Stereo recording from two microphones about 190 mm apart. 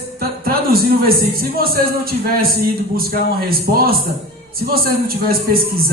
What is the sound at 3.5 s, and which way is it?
Speech, 50° right (ahead or behind).